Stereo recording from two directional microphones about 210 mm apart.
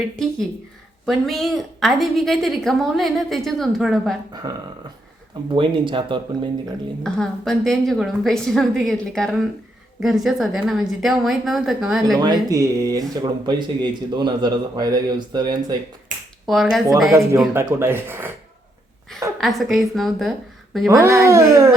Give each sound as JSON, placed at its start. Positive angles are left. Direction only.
{"t": 1.0, "sound": "a woman's voice", "side_deg": 0}
{"t": 4.4, "sound": "speech", "side_deg": -20}
{"t": 7.0, "sound": "a woman's voice", "side_deg": 0}
{"t": 12.1, "sound": "speech", "side_deg": -20}
{"t": 16.5, "sound": "a woman's voice", "side_deg": 0}
{"t": 17.4, "sound": "speech", "side_deg": -10}
{"t": 19.4, "sound": "a woman's voice", "side_deg": 0}
{"t": 20.9, "sound": "speech", "side_deg": -15}